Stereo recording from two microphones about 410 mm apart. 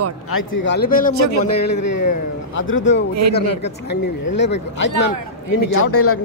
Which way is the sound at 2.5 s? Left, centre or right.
Left.